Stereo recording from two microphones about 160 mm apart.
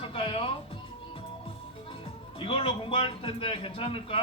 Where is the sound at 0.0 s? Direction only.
35° left (ahead or behind).